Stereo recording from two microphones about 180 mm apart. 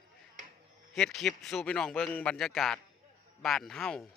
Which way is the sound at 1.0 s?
Centre (ahead or behind).